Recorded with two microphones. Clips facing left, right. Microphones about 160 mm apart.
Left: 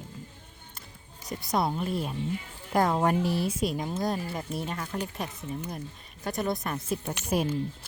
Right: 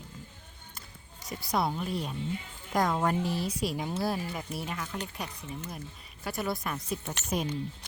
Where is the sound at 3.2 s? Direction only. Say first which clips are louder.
Left 4 dB; 65° left (ahead or behind).